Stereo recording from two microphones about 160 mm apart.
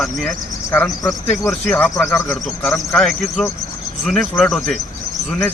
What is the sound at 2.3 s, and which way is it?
Speech, centre (ahead or behind).